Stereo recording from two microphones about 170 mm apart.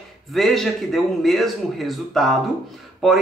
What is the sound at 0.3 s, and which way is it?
Speech, centre (ahead or behind).